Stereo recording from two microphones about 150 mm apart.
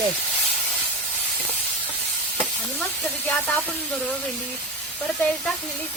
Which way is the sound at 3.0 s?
15° left (ahead or behind).